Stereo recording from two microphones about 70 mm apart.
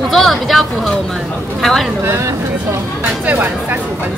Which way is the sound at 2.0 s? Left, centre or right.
Right.